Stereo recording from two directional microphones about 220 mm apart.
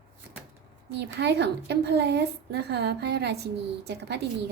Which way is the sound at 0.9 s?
50° right (ahead or behind).